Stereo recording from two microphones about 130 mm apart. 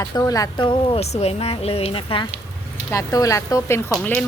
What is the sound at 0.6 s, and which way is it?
Speech, 40° left (ahead or behind).